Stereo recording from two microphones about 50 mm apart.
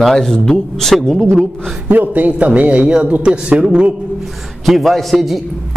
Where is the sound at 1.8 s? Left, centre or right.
Right; by 3.9 s centre.